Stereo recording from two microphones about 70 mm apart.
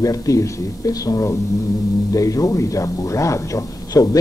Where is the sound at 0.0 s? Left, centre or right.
Left.